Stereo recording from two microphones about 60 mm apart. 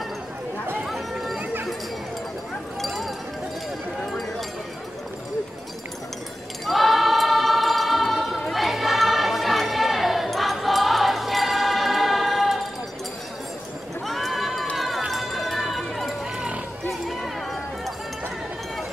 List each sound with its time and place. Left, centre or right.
0.8 s chatter: centre
1.4 s a sound: right
2.8 s a sound: centre
6.6 s choir: centre
14.0 s neigh: centre
14.8 s run: centre